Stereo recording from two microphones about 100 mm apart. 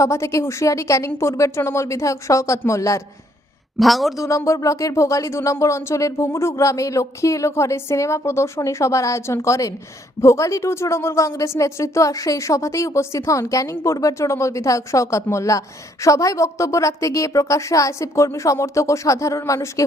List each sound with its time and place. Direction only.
0.0 s a woman's voice: 30° left (ahead or behind)
3.8 s a man's voice: centre (ahead or behind)
4.2 s a woman's voice: 30° left (ahead or behind)